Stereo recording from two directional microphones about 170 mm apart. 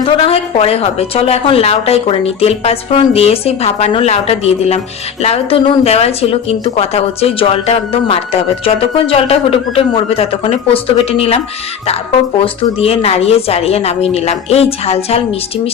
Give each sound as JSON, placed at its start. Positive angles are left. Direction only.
{"t": 0.0, "sound": "speech", "side_deg": 35}
{"t": 12.8, "sound": "speech", "side_deg": 35}